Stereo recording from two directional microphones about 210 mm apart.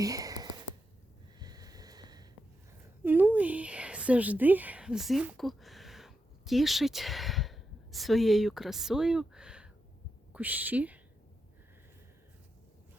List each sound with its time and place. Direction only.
0.0 s whispering: 15° right (ahead or behind)
1.4 s a sound: 20° right (ahead or behind)
3.0 s speech: 10° right (ahead or behind)